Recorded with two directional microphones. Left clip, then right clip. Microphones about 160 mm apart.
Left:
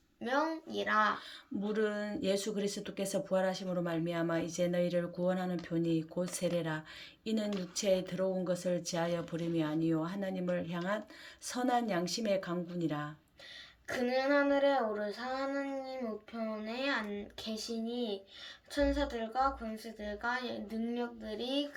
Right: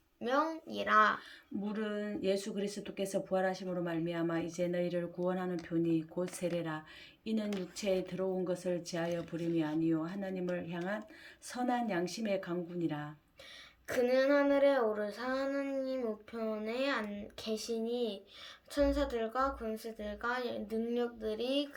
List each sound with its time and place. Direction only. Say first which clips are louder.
0.2 s speech: even; 25° right (ahead or behind)
1.6 s speech: left 5 dB; 30° left (ahead or behind)
13.8 s speech: right 3 dB; 35° right (ahead or behind)
18.7 s speech: right 1 dB; 25° right (ahead or behind)